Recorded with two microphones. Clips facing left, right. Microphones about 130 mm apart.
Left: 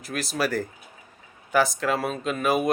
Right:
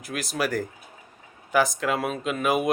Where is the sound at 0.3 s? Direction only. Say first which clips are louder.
Even; 15° right (ahead or behind).